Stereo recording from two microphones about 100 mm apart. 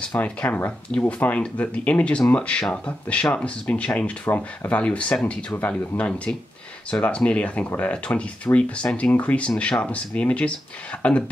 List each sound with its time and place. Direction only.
0.0 s speech: 15° left (ahead or behind)